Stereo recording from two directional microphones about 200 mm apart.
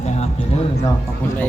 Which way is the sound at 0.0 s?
35° left (ahead or behind).